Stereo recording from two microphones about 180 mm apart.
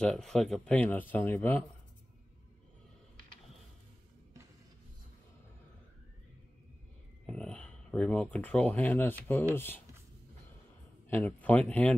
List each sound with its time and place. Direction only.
0.0 s speech: centre (ahead or behind)
7.2 s speech: 5° left (ahead or behind)
11.1 s speech: 10° left (ahead or behind)